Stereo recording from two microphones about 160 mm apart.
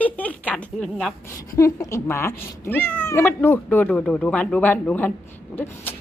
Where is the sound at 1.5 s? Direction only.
20° left (ahead or behind).